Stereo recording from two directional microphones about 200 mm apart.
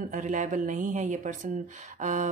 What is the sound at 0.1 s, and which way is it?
Speech, 40° right (ahead or behind).